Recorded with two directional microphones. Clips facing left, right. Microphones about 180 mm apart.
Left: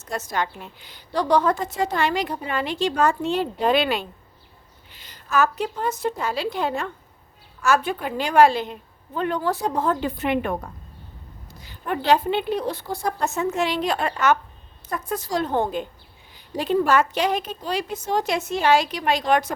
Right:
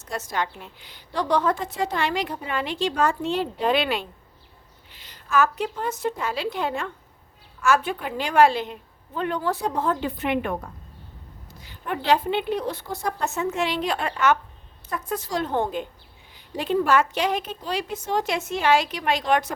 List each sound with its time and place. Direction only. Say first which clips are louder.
0.0 s a woman's voice: left 2 dB; 45° left (ahead or behind)